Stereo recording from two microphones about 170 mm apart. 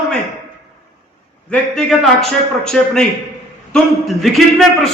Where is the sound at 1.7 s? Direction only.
Centre (ahead or behind).